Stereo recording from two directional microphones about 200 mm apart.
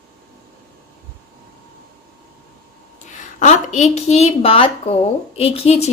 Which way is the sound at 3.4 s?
35° left (ahead or behind).